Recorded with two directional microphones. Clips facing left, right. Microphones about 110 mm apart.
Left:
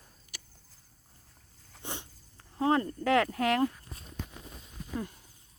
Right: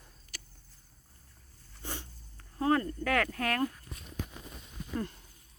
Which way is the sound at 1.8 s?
20° left (ahead or behind).